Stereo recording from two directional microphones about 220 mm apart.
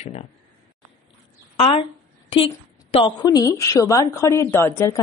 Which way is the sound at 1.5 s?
25° left (ahead or behind).